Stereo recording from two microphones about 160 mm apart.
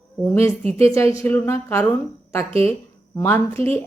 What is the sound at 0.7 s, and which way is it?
A woman's voice, 15° left (ahead or behind).